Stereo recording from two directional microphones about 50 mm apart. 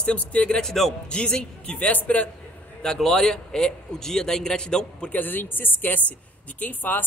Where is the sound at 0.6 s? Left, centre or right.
Centre.